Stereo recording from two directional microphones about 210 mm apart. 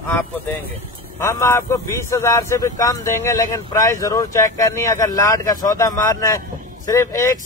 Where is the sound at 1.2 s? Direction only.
10° left (ahead or behind).